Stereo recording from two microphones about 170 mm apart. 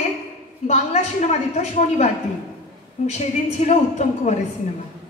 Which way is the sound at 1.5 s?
40° left (ahead or behind).